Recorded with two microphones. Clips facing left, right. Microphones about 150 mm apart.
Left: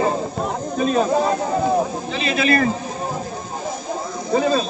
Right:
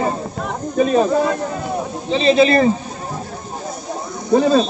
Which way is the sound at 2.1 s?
30° right (ahead or behind).